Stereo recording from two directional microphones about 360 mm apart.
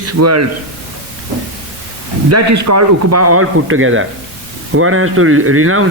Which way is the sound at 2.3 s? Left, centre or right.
Right.